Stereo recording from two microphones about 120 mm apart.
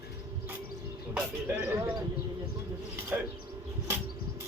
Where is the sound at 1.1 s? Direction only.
10° right (ahead or behind).